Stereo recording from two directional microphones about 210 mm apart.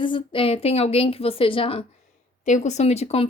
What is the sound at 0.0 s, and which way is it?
A woman's voice, 25° left (ahead or behind).